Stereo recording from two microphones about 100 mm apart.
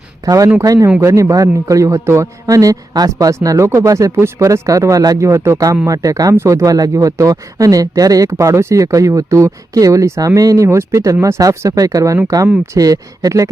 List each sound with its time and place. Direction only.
0.3 s speech: 35° right (ahead or behind)